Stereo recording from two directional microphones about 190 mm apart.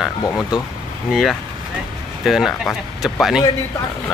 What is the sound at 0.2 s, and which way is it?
Speech, 20° left (ahead or behind).